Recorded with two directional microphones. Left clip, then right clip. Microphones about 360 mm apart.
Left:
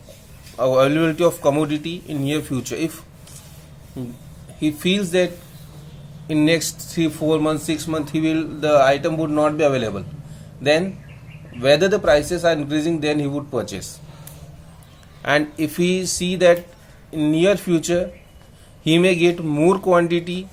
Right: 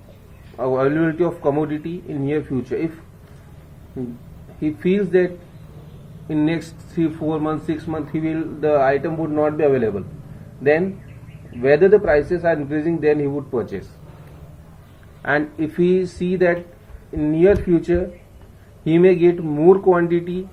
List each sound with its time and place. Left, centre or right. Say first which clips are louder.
0.6 s speech: left 2 dB; left
4.6 s speech: right 1 dB; left
11.6 s speech: right 2 dB; left
15.2 s speech: left 1 dB; left